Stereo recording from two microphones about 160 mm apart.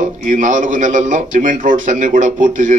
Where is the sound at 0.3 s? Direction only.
50° right (ahead or behind).